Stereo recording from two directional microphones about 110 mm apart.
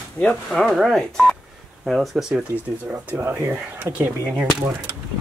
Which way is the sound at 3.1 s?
20° right (ahead or behind).